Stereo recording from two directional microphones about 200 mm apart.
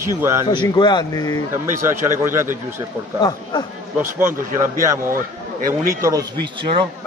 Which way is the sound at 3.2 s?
20° left (ahead or behind).